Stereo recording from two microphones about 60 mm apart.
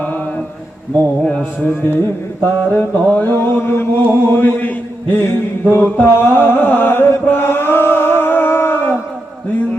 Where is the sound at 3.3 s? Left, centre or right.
Left.